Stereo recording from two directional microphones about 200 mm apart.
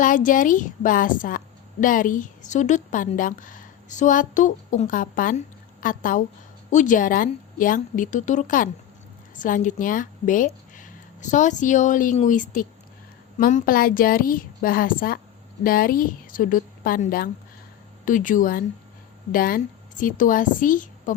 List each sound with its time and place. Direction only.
0.0 s a woman's voice: 40° left (ahead or behind)